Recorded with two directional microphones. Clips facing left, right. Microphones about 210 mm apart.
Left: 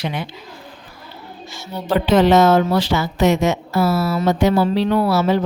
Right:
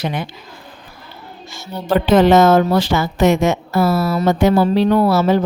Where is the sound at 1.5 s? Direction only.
50° right (ahead or behind).